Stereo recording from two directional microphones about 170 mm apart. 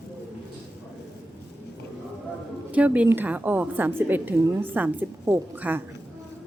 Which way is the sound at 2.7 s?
10° right (ahead or behind).